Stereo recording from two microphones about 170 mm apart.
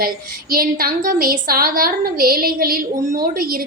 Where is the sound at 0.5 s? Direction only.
60° right (ahead or behind).